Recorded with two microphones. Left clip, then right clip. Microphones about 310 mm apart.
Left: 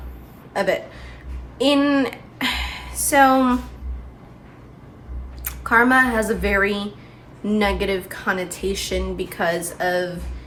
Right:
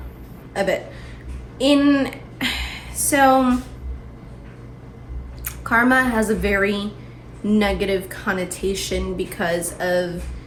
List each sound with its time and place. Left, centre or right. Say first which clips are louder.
0.5 s a woman's voice: even; centre
5.5 s speech: left 1 dB; centre